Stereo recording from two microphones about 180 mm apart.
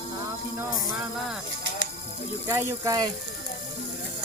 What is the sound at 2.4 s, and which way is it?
Speech, 20° right (ahead or behind).